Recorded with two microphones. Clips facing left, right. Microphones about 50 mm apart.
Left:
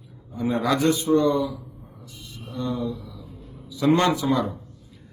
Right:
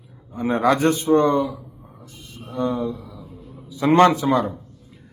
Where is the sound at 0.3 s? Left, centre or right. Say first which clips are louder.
Right 4 dB; right.